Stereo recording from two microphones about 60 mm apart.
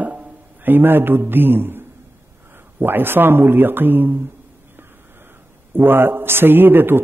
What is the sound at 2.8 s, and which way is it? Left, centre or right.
A man's voice, right.